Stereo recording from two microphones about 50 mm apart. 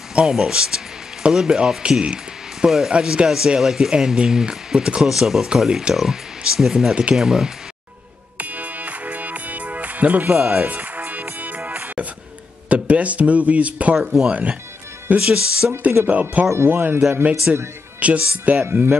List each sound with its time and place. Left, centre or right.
0.3 s speech: centre
5.0 s speech: centre
8.4 s music: right
10.3 s speech: centre
10.6 s music: right
12.6 s speech: right
13.9 s speech: centre
15.1 s speech: centre
16.1 s speech: right
16.6 s speech: right
17.1 s speech: right